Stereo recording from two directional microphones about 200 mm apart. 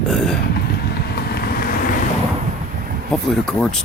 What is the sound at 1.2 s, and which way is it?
Vehicle, 50° left (ahead or behind).